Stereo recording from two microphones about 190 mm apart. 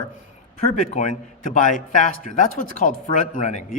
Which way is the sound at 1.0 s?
45° left (ahead or behind).